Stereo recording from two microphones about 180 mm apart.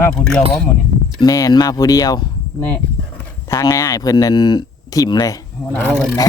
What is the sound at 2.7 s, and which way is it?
Speech, 10° left (ahead or behind).